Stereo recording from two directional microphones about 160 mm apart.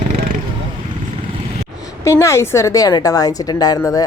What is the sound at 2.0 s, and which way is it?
A woman's voice, 20° left (ahead or behind).